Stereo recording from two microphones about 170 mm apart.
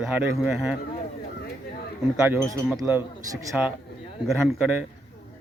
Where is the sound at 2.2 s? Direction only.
10° right (ahead or behind).